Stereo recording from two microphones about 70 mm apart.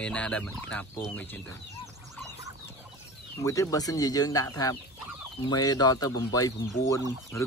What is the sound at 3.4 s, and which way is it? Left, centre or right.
Speech, left.